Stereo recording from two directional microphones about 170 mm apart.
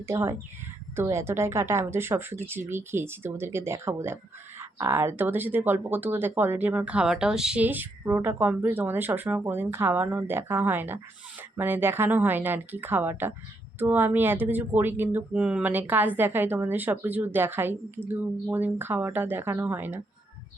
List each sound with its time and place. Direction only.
0.0 s speech: 15° right (ahead or behind)